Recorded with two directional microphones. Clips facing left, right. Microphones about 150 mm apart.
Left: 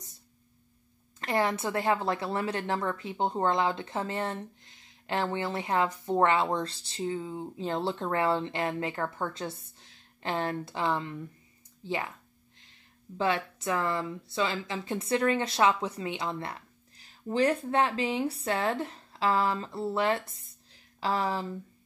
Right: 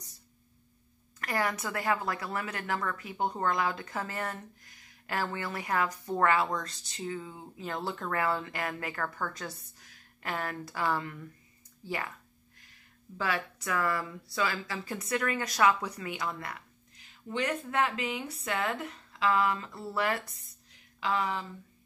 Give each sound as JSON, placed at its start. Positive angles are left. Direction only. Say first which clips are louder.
{"t": 1.2, "sound": "a woman's voice", "louder": "left 4 dB", "side_deg": 25}
{"t": 13.2, "sound": "a woman's voice", "louder": "left 4 dB", "side_deg": 25}